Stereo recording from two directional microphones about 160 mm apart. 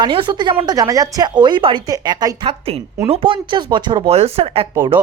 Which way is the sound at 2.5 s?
40° right (ahead or behind).